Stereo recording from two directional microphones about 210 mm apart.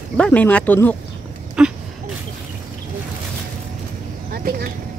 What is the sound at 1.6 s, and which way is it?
Speech, 5° right (ahead or behind).